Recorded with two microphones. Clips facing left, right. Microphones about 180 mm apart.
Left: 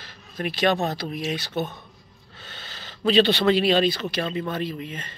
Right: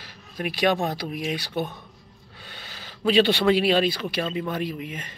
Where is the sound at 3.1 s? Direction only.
10° right (ahead or behind).